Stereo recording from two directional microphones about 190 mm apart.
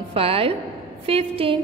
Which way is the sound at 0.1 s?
30° right (ahead or behind).